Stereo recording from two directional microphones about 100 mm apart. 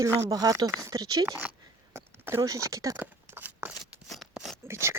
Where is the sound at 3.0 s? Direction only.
20° right (ahead or behind).